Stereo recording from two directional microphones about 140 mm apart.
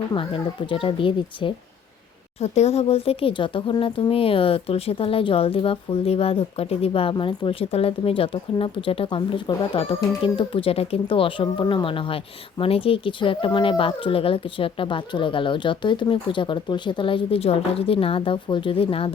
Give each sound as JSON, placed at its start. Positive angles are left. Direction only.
{"t": 0.7, "sound": "speech", "side_deg": 40}
{"t": 2.4, "sound": "speech", "side_deg": 50}